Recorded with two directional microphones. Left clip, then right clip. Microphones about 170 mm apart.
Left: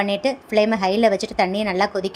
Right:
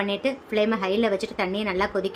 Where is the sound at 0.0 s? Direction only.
25° left (ahead or behind).